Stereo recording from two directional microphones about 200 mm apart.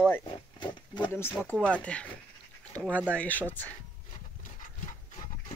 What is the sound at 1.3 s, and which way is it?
Speech, 5° left (ahead or behind).